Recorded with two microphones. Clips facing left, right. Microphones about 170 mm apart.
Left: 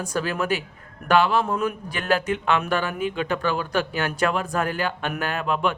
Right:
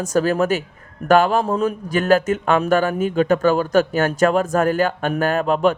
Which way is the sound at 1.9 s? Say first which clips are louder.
Right 9 dB; 45° right (ahead or behind).